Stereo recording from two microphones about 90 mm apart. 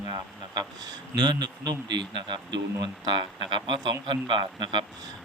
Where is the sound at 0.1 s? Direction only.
50° right (ahead or behind).